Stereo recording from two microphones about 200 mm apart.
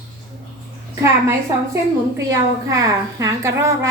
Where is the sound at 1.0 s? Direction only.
15° right (ahead or behind).